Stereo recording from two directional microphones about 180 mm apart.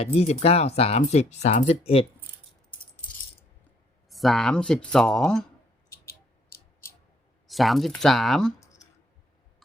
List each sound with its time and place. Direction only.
0.0 s speech: 35° left (ahead or behind)
4.1 s speech: centre (ahead or behind)
6.1 s a sound: 60° left (ahead or behind)
7.4 s speech: centre (ahead or behind)
8.6 s clicking: 20° left (ahead or behind)